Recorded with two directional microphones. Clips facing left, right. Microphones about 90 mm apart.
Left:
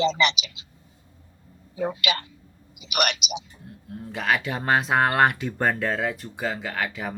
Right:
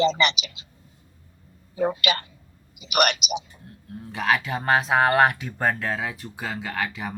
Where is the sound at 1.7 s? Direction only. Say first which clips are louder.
Right 3 dB; 45° right (ahead or behind).